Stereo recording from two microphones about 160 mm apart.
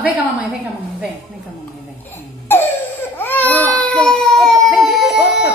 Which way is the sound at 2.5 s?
15° left (ahead or behind).